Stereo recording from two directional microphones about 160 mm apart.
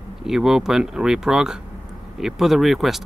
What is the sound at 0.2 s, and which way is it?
Speech, 5° right (ahead or behind).